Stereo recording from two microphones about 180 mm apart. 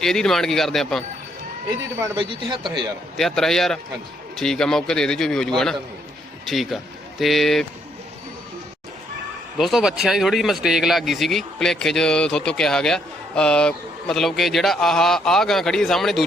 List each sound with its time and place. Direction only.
0.0 s speech: centre (ahead or behind)
2.0 s speech: 25° right (ahead or behind)
3.2 s a man's voice: centre (ahead or behind)
9.6 s speech: centre (ahead or behind)